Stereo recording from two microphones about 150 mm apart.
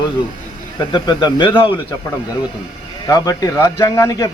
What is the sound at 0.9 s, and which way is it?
Speech, 30° left (ahead or behind).